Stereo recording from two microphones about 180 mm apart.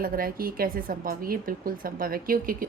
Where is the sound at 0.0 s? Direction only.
55° right (ahead or behind).